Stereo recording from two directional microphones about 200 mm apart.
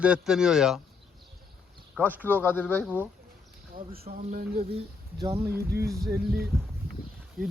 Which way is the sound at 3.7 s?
45° right (ahead or behind).